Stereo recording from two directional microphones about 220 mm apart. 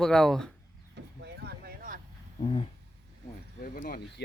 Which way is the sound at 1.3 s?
45° right (ahead or behind).